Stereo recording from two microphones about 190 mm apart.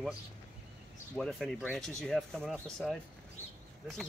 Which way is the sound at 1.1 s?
Centre (ahead or behind).